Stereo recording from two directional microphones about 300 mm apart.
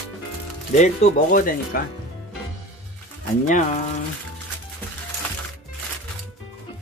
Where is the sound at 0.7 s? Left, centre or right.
Left.